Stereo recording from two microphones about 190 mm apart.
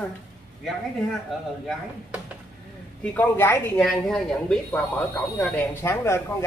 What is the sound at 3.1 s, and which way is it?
Speech, 10° left (ahead or behind).